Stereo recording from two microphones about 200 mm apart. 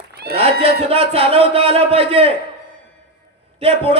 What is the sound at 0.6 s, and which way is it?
A man's voice, 30° right (ahead or behind).